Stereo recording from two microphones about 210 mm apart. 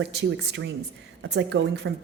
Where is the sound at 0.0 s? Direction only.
55° right (ahead or behind).